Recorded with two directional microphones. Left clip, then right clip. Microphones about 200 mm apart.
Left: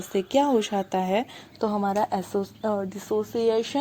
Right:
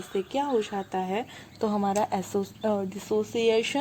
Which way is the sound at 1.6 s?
15° left (ahead or behind).